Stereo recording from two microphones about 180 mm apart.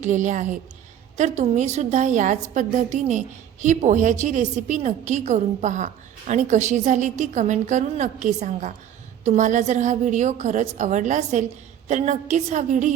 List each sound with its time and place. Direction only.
0.0 s a woman's voice: 45° right (ahead or behind)